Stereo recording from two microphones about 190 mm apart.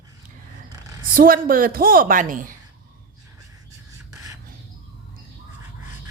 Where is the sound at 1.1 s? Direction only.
50° right (ahead or behind).